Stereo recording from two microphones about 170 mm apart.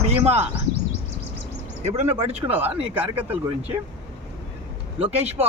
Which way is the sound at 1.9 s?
35° right (ahead or behind).